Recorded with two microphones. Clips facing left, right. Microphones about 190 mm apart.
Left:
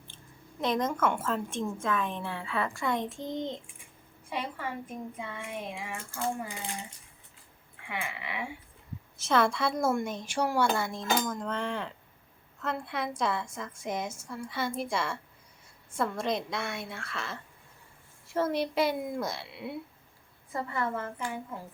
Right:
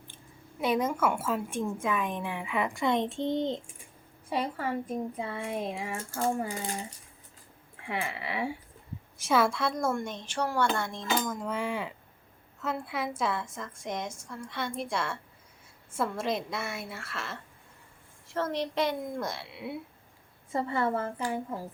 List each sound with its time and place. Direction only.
0.6 s a woman's voice: 10° right (ahead or behind); by 6.7 s 40° right (ahead or behind)
7.9 s speech: 35° right (ahead or behind)
9.1 s a woman's voice: 10° right (ahead or behind)
11.3 s a woman's voice: 5° right (ahead or behind)
18.3 s a woman's voice: 10° left (ahead or behind)
20.5 s speech: 25° right (ahead or behind)